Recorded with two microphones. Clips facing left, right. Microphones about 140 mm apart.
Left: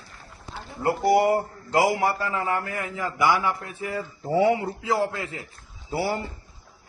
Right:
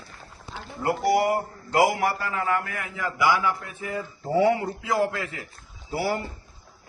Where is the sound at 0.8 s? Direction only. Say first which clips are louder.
Left 2 dB; 25° left (ahead or behind).